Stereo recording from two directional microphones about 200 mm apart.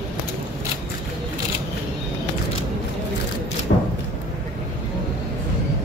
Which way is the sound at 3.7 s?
50° left (ahead or behind).